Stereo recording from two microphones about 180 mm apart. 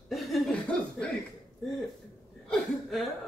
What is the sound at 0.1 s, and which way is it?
Chuckle, centre (ahead or behind).